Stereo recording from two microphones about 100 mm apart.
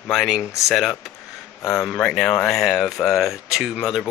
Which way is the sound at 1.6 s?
30° left (ahead or behind).